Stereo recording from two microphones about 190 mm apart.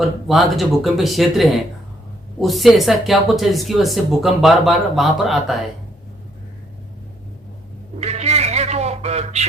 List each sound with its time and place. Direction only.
0.0 s speech: centre (ahead or behind)
7.9 s meow: 35° right (ahead or behind)